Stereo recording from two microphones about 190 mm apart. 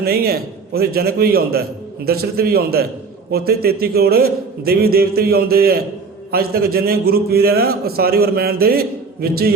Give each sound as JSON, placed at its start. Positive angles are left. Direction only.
{"t": 0.0, "sound": "a man's voice", "side_deg": -55}